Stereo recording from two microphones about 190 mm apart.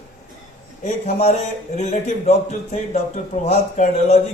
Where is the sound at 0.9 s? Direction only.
35° left (ahead or behind).